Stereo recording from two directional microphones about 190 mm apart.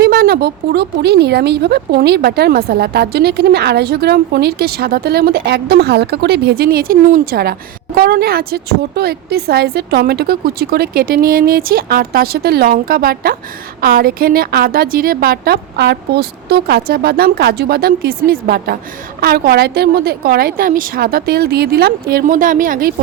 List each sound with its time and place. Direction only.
0.0 s a woman's voice: 55° right (ahead or behind)